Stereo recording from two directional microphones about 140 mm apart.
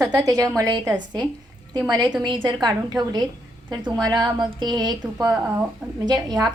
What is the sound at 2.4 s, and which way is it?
A woman's voice, 30° right (ahead or behind).